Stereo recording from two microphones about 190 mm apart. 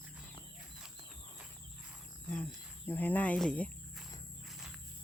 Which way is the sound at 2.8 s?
10° left (ahead or behind).